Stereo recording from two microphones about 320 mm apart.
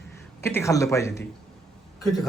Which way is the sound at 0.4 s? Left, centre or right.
Centre.